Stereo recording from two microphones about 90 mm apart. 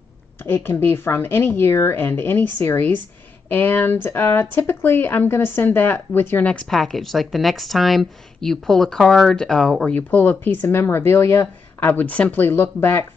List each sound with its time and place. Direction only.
0.4 s speech: 25° left (ahead or behind)
6.7 s speech: centre (ahead or behind)
9.9 s speech: 20° left (ahead or behind)